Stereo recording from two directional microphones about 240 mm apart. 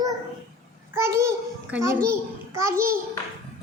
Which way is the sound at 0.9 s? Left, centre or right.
Centre.